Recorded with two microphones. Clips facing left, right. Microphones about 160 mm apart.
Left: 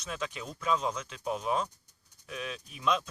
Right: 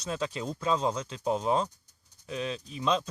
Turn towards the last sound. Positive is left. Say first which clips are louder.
# right 2 dB
turn(degrees=-25)  # may be behind; listen again after turning